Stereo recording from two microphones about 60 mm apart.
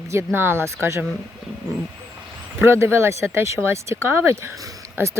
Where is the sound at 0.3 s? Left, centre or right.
Right.